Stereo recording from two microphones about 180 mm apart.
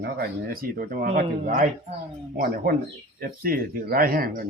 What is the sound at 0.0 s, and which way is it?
Speech, 55° right (ahead or behind).